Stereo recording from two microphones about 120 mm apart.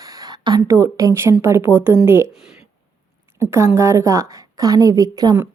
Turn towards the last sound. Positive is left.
turn(degrees=-30)  # may be behind; listen again after turning